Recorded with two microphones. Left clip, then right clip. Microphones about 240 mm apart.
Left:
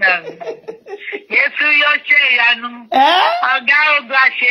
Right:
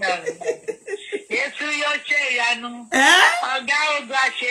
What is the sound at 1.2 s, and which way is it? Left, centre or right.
Speech, left.